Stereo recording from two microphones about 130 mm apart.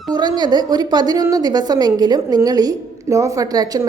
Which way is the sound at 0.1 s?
30° right (ahead or behind).